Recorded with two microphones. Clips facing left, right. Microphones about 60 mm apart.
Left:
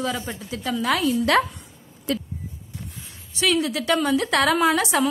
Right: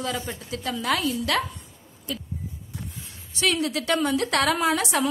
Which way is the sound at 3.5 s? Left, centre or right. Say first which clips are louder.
Left 2 dB; left.